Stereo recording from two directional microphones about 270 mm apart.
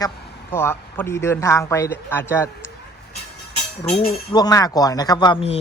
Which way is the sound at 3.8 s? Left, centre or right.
Left.